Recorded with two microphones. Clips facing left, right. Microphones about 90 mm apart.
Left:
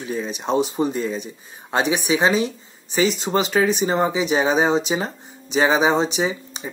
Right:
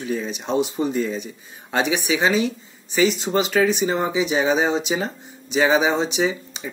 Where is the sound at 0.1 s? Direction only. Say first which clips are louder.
Even; 20° left (ahead or behind).